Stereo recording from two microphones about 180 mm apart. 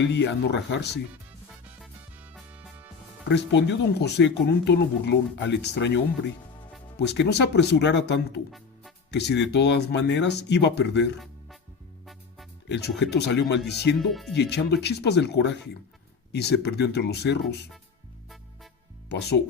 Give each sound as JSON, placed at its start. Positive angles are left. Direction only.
{"t": 0.0, "sound": "speech", "side_deg": 75}
{"t": 3.2, "sound": "speech", "side_deg": 75}
{"t": 12.6, "sound": "speech", "side_deg": 70}
{"t": 14.1, "sound": "speech", "side_deg": 0}
{"t": 14.3, "sound": "speech", "side_deg": 65}
{"t": 19.0, "sound": "speech", "side_deg": 70}